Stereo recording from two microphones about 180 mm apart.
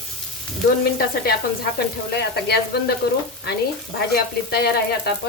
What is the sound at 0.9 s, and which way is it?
Frying, 55° left (ahead or behind).